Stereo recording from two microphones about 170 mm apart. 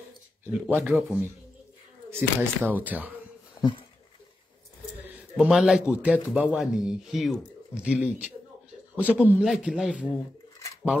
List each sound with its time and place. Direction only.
0.5 s speech: 10° right (ahead or behind)
3.6 s speech: 20° left (ahead or behind)
5.0 s a man's voice: 5° right (ahead or behind)